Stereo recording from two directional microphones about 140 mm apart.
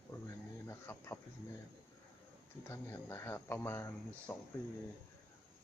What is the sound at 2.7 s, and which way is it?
Speech, 20° left (ahead or behind).